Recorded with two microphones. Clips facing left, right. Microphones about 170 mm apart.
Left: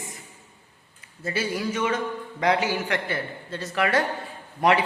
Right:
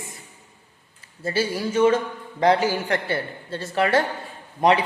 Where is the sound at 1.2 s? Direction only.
30° right (ahead or behind).